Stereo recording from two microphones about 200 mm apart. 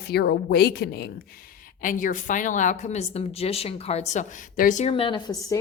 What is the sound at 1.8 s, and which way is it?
A woman's voice, 40° left (ahead or behind).